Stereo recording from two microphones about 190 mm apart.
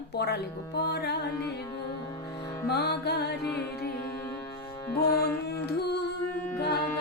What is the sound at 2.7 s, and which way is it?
Music, 60° left (ahead or behind).